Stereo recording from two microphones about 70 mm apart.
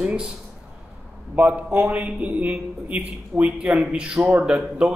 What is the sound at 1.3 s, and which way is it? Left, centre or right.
A man's voice, right.